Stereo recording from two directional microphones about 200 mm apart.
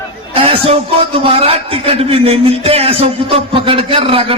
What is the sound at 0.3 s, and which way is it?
A man's voice, 30° right (ahead or behind).